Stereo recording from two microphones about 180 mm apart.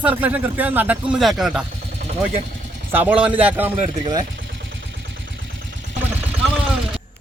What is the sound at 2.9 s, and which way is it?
Speech, 10° right (ahead or behind).